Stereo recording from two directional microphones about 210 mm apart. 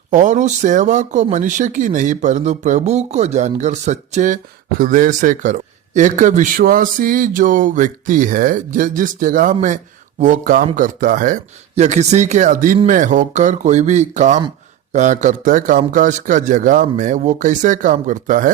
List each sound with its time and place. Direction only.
0.1 s a man's voice: 35° right (ahead or behind)